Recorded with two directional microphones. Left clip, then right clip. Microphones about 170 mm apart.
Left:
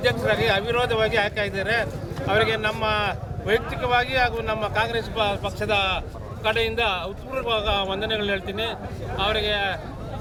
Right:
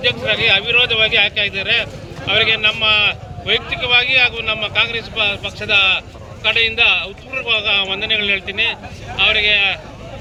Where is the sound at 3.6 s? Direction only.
60° left (ahead or behind).